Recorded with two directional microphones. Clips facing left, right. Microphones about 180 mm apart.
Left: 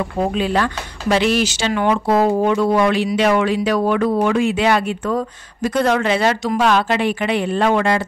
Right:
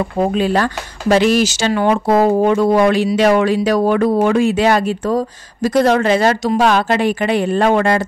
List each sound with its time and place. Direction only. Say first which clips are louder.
0.3 s speech: right 3 dB; 40° right (ahead or behind)